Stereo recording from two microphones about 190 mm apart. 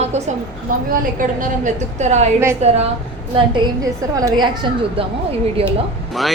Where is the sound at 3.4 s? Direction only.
20° right (ahead or behind).